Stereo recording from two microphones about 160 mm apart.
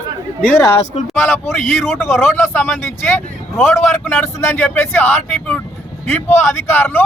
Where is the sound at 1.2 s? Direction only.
10° left (ahead or behind).